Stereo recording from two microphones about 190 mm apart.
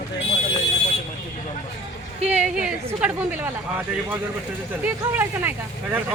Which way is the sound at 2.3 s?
5° right (ahead or behind).